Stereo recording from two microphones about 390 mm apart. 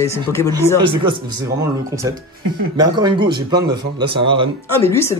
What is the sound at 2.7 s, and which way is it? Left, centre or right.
Speech, centre.